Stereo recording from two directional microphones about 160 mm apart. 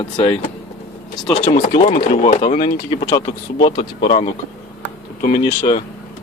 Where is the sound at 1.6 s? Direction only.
40° left (ahead or behind).